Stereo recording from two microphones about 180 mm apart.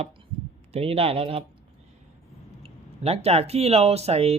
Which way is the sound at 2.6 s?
35° right (ahead or behind).